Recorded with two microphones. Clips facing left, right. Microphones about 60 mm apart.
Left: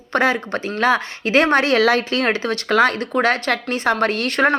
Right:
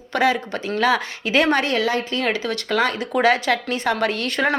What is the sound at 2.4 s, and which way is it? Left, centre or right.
A woman's voice, left.